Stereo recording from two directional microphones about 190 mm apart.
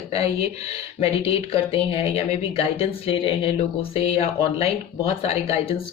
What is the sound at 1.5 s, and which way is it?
Speech, 30° left (ahead or behind).